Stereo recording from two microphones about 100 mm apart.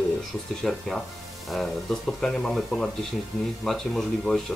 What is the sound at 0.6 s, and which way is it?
Speech, 5° left (ahead or behind).